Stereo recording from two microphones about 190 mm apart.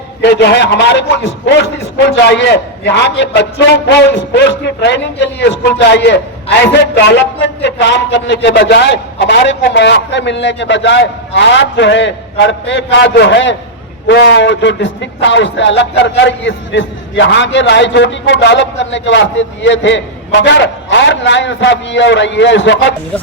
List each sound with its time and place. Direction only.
0.2 s a man's voice: 65° left (ahead or behind)